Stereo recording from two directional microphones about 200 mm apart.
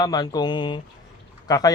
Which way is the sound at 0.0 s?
20° left (ahead or behind).